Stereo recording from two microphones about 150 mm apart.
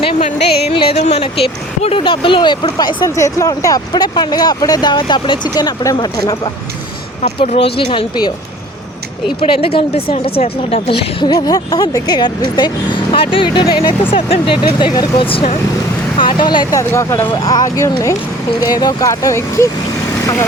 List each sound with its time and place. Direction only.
0.0 s music: 35° left (ahead or behind)
0.3 s speech: 45° left (ahead or behind); by 6.5 s 25° left (ahead or behind)
7.3 s a woman's voice: 40° left (ahead or behind)
9.4 s a woman's voice: 40° left (ahead or behind)
16.9 s speech: 15° left (ahead or behind)
17.3 s speech: 25° left (ahead or behind)